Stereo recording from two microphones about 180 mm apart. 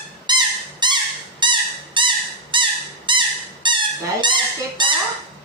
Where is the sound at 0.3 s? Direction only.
25° right (ahead or behind).